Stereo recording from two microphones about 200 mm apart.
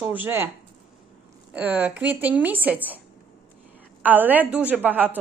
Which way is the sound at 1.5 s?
10° right (ahead or behind).